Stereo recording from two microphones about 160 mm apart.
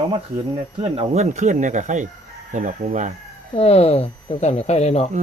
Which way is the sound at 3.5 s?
40° left (ahead or behind).